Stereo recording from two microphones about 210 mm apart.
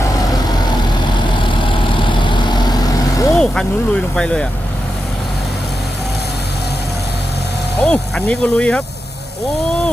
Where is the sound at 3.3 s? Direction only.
Centre (ahead or behind).